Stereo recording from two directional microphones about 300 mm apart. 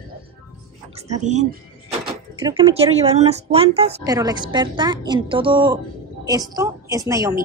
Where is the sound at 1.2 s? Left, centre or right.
Right.